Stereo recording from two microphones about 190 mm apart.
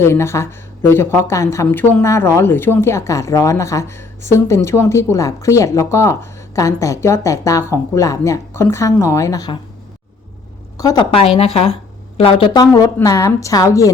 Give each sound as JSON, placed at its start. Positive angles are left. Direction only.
{"t": 0.0, "sound": "speech", "side_deg": 15}
{"t": 10.8, "sound": "speech", "side_deg": 20}